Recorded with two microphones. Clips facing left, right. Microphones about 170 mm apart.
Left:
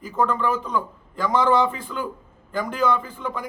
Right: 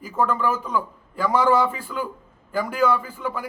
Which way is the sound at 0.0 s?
10° right (ahead or behind).